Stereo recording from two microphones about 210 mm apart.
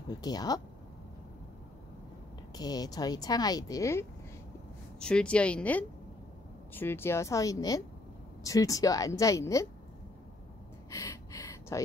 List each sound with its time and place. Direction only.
0.1 s speech: 20° left (ahead or behind)
2.5 s speech: 20° left (ahead or behind)
4.9 s speech: 5° left (ahead or behind)
10.9 s a sound: 15° left (ahead or behind)